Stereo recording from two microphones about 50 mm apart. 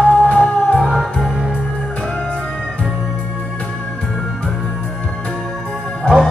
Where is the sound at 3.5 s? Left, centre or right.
Left.